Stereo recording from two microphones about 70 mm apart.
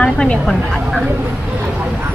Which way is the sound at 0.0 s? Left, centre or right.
Centre.